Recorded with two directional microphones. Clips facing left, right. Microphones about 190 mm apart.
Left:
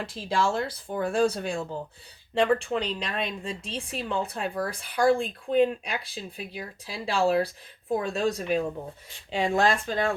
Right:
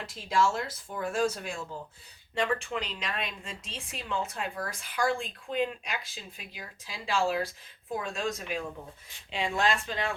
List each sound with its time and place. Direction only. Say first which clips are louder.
0.0 s speech: left 1 dB; 30° left (ahead or behind)